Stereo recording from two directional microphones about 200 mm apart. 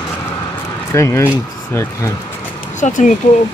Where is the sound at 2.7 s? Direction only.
40° left (ahead or behind).